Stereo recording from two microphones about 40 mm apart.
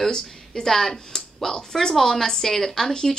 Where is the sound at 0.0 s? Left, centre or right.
Centre.